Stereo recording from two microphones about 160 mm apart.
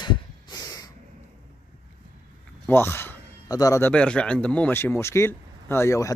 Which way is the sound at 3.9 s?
5° left (ahead or behind).